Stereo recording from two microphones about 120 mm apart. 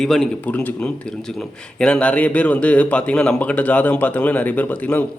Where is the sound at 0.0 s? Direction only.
5° left (ahead or behind).